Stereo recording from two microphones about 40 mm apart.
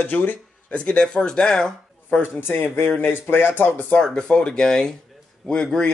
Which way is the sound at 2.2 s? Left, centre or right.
Left.